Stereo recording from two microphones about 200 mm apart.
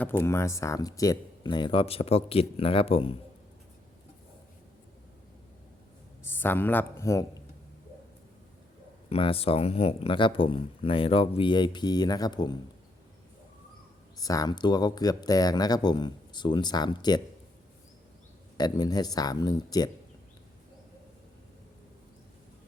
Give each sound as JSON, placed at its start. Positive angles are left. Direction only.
{"t": 0.0, "sound": "speech", "side_deg": 10}
{"t": 6.2, "sound": "speech", "side_deg": 10}
{"t": 9.0, "sound": "speech", "side_deg": 30}
{"t": 14.2, "sound": "speech", "side_deg": 20}
{"t": 18.5, "sound": "speech", "side_deg": 20}